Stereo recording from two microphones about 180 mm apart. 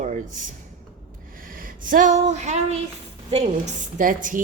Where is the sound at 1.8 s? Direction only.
45° right (ahead or behind).